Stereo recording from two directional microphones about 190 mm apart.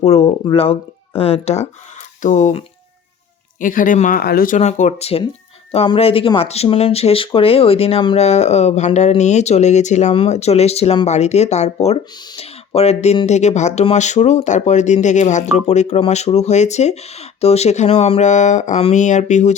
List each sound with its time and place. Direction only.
0.0 s speech: 35° left (ahead or behind)